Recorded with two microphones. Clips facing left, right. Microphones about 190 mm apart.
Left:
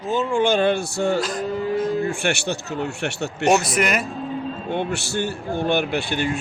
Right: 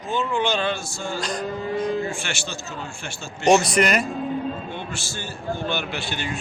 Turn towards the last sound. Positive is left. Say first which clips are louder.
# left 7 dB
turn(degrees=55)  # may be behind; listen again after turning